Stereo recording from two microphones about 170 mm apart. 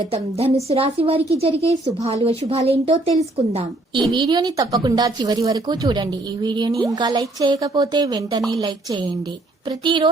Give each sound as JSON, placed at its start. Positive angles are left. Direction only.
{"t": 0.1, "sound": "a woman's voice", "side_deg": -35}